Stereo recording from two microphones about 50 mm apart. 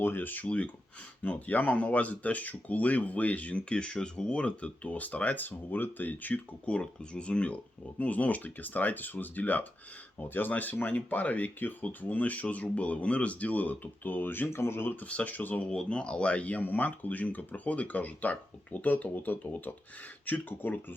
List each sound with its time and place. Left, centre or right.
0.0 s speech: left
0.4 s speech: left
6.7 s speech: left
15.0 s speech: left
15.7 s speech: centre; by 20.7 s left